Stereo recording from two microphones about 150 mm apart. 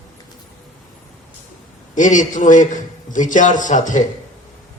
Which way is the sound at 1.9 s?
55° left (ahead or behind).